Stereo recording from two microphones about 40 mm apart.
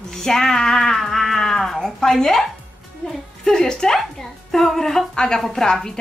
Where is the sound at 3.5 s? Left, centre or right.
Centre.